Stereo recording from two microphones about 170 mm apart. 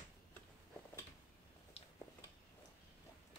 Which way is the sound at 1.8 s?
35° left (ahead or behind).